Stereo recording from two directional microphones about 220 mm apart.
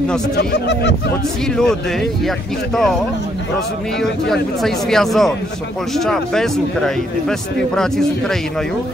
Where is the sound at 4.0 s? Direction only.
Centre (ahead or behind).